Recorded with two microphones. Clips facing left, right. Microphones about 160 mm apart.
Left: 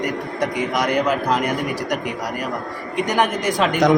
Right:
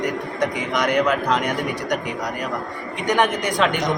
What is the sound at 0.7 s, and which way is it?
Speech, 5° left (ahead or behind).